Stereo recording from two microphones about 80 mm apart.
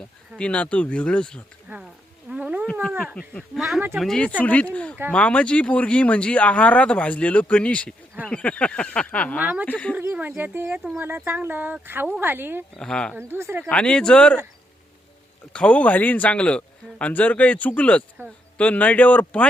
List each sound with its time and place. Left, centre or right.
0.3 s speech: centre
1.7 s speech: right
2.3 s insect: centre
3.2 s speech: centre
4.2 s a man's voice: centre
9.4 s speech: centre
9.6 s speech: centre
10.0 s speech: right
12.7 s speech: centre
13.1 s speech: right
13.7 s speech: centre
15.5 s a man's voice: centre